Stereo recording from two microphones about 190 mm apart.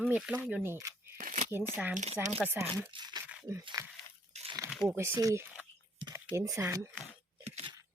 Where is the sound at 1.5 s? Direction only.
10° right (ahead or behind).